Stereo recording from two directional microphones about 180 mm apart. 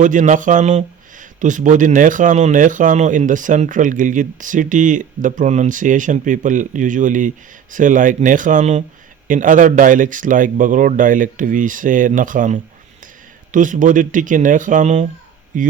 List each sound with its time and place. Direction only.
0.0 s speech: 45° right (ahead or behind)